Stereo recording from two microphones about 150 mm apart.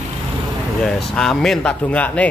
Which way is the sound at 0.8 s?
5° left (ahead or behind).